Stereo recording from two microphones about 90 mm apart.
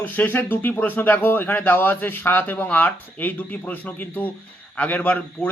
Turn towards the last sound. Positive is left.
turn(degrees=20)  # may be behind; listen again after turning